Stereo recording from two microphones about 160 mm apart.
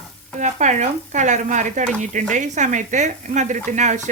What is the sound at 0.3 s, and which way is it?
Speech, 50° right (ahead or behind).